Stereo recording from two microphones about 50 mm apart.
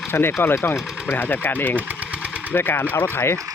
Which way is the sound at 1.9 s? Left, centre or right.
Right.